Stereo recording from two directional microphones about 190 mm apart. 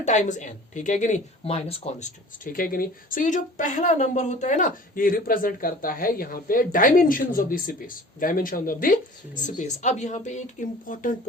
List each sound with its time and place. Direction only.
0.0 s a woman's voice: 40° left (ahead or behind)